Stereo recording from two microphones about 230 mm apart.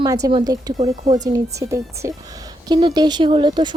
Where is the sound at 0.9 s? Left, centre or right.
Right.